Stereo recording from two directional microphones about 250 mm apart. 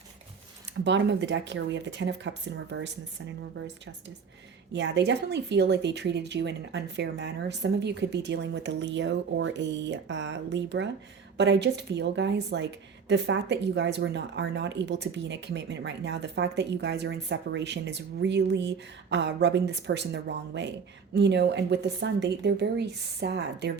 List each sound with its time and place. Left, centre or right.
0.9 s speech: right
4.7 s speech: right